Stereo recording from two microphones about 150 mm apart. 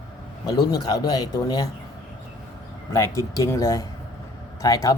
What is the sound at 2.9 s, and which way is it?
Speech, 25° left (ahead or behind).